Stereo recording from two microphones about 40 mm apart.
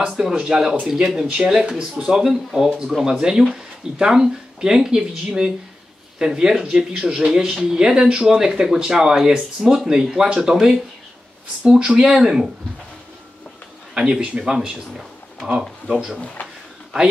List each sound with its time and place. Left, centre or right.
0.3 s speech: centre
8.4 s speech: centre
14.2 s speech: right
15.0 s a sound: centre
15.9 s speech: centre
16.4 s a sound: left